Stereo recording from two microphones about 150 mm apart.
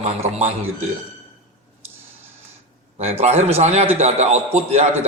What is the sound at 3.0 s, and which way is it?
A man's voice, 45° right (ahead or behind).